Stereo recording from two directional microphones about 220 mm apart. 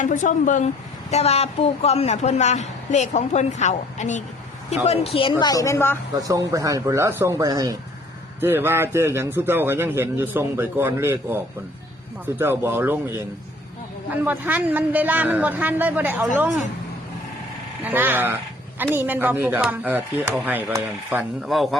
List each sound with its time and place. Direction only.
0.0 s a man's voice: 35° left (ahead or behind); by 6.0 s 10° left (ahead or behind)
6.2 s a man's voice: 15° right (ahead or behind)
17.8 s a man's voice: 10° right (ahead or behind)